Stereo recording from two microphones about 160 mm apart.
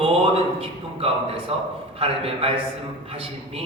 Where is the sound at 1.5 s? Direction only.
40° right (ahead or behind).